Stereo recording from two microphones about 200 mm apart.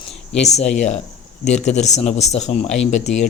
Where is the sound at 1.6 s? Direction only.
35° left (ahead or behind).